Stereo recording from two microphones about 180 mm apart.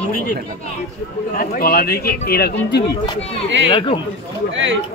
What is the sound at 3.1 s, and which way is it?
Speech, 35° left (ahead or behind).